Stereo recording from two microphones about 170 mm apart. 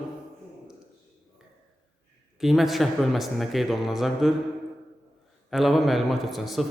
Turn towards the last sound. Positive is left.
turn(degrees=0)  # may be behind; listen again after turning